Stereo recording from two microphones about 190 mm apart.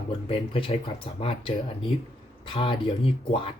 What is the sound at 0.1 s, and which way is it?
Speech, 30° left (ahead or behind).